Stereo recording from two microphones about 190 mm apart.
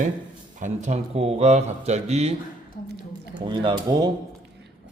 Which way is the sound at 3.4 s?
25° right (ahead or behind).